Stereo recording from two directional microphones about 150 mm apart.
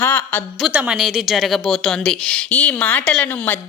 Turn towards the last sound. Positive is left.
turn(degrees=10)  # may be behind; listen again after turning